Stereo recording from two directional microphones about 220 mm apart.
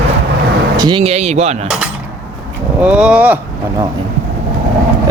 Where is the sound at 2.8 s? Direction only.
5° right (ahead or behind).